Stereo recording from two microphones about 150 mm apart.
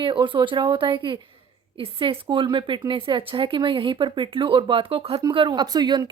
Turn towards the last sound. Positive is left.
turn(degrees=-30)  # may be behind; listen again after turning